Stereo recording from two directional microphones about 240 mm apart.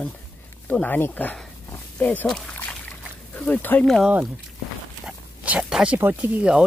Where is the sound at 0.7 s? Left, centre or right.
Centre.